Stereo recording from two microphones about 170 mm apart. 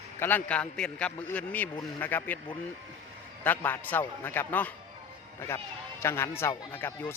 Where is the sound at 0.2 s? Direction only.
10° left (ahead or behind).